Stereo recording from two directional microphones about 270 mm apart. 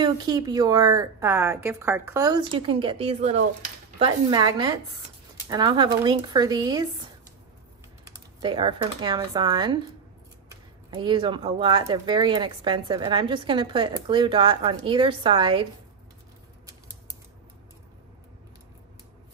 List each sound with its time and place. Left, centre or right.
0.0 s a woman's voice: centre